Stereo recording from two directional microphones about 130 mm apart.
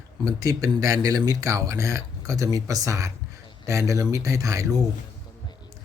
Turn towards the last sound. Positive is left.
turn(degrees=-25)  # may be behind; listen again after turning